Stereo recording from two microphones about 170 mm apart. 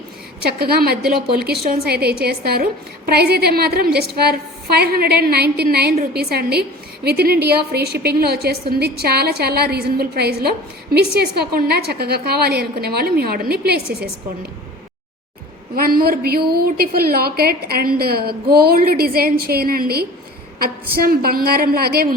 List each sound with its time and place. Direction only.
0.4 s a woman's voice: 65° right (ahead or behind)
15.7 s a woman's voice: 60° right (ahead or behind)